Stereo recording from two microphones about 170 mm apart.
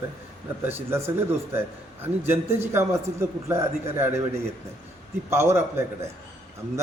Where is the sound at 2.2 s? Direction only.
15° right (ahead or behind).